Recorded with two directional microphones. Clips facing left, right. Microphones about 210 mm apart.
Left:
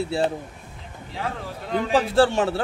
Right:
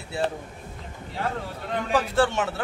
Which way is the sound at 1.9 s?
30° left (ahead or behind).